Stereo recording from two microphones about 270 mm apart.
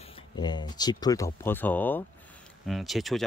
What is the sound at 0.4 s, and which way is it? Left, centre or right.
Speech, centre.